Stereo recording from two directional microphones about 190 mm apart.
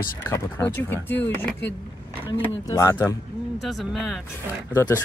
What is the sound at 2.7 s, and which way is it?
Speech, 15° left (ahead or behind).